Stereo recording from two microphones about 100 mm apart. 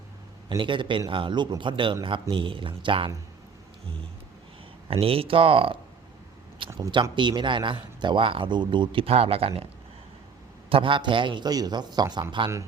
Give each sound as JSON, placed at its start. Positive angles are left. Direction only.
{"t": 0.6, "sound": "speech", "side_deg": -55}
{"t": 4.9, "sound": "speech", "side_deg": -70}
{"t": 6.7, "sound": "speech", "side_deg": -50}
{"t": 10.7, "sound": "a man's voice", "side_deg": -60}